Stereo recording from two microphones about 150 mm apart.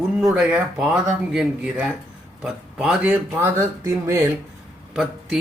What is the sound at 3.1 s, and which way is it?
Speech, 15° right (ahead or behind).